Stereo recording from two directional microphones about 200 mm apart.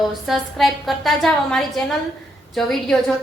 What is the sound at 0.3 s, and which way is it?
A woman's voice, centre (ahead or behind).